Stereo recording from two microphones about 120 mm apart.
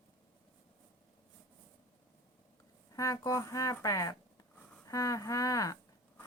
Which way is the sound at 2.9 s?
25° left (ahead or behind).